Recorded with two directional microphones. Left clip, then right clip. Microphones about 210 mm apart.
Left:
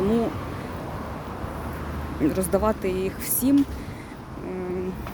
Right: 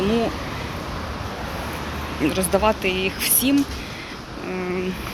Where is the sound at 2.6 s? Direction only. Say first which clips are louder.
Right 7 dB; 20° left (ahead or behind).